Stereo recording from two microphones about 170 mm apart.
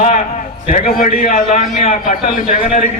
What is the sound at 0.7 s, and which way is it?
A man's voice, 55° left (ahead or behind).